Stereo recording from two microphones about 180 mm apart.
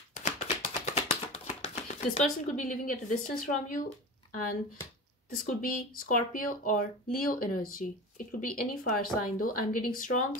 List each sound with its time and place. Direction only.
0.1 s chopping: 45° left (ahead or behind)
2.5 s speech: 45° left (ahead or behind)
5.3 s speech: 50° left (ahead or behind)